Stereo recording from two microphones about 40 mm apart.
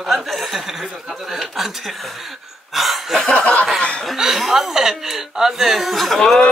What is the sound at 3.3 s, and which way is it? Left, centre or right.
Chuckle, left.